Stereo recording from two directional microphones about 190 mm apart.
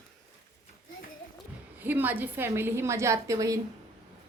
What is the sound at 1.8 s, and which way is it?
A woman's voice, 10° right (ahead or behind).